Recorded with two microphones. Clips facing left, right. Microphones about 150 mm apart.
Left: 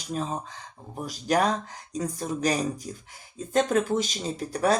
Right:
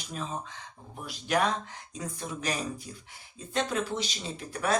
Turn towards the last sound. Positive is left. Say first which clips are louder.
# left 5 dB
turn(degrees=35)  # may be behind; listen again after turning